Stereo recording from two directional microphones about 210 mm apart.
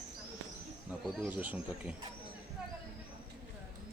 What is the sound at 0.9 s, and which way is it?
Speech, 5° right (ahead or behind).